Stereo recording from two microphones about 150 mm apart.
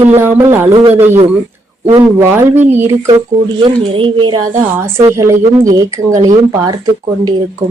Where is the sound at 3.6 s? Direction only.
35° right (ahead or behind).